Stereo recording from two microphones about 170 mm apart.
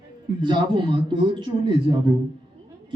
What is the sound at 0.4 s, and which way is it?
Speech, 30° right (ahead or behind).